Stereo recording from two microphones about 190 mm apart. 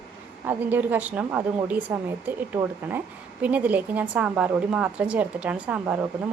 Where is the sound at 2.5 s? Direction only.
25° right (ahead or behind).